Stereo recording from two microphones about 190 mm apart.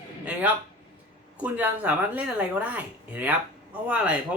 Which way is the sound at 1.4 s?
10° right (ahead or behind).